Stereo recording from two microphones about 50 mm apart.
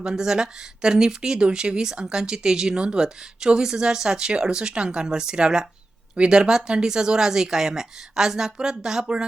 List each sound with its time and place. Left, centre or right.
0.0 s speech: centre